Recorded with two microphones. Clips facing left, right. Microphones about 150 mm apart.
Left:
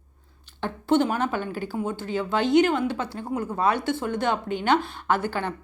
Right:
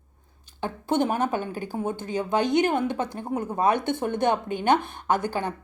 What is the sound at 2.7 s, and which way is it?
Speech, 50° right (ahead or behind).